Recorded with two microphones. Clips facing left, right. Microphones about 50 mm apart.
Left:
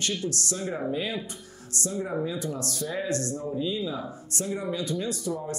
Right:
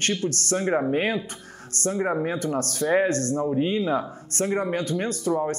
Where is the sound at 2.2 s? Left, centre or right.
Right.